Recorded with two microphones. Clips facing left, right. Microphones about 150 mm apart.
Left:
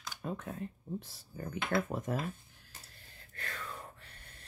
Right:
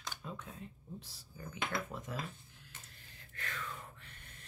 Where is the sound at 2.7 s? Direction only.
35° left (ahead or behind).